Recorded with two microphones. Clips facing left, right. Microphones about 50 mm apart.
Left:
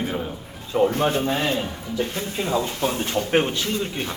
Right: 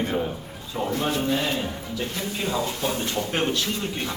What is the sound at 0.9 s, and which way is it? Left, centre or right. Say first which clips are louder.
Speech: left 2 dB; left.